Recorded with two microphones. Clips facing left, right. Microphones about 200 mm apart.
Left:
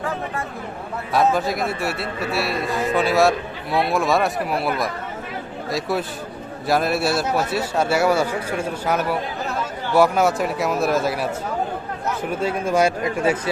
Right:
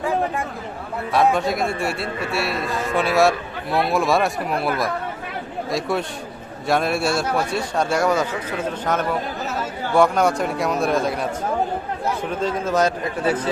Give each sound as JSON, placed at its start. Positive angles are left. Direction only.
{"t": 1.1, "sound": "speech", "side_deg": 0}